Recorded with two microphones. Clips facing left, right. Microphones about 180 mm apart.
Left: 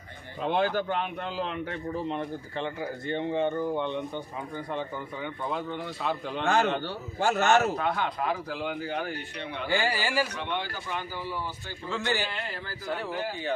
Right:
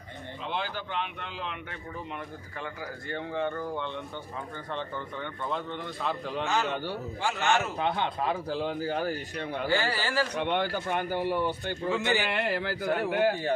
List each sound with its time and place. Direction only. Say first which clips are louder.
0.4 s a man's voice: left 9 dB; 50° left (ahead or behind); by 6.4 s centre (ahead or behind)
6.4 s a man's voice: left 5 dB; 55° left (ahead or behind)
6.7 s a man's voice: left 2 dB; 10° right (ahead or behind)
7.2 s a man's voice: left 5 dB; 45° left (ahead or behind)
7.8 s speech: even; 25° right (ahead or behind); by 9.6 s 45° right (ahead or behind)
9.6 s speech: left 1 dB; 15° left (ahead or behind)
10.3 s speech: right 5 dB; 55° right (ahead or behind)
11.9 s a man's voice: right 2 dB; 15° right (ahead or behind)
12.3 s speech: right 8 dB; 70° right (ahead or behind)